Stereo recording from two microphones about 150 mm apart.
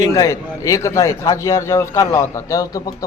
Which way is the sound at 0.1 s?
20° left (ahead or behind).